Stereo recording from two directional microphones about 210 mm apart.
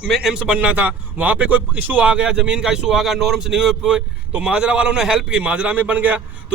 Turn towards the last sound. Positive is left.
turn(degrees=-10)  # may be behind; listen again after turning